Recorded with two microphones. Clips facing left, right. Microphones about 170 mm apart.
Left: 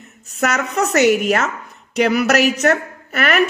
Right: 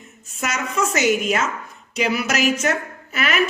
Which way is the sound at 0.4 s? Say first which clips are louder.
Left 4 dB; 65° left (ahead or behind).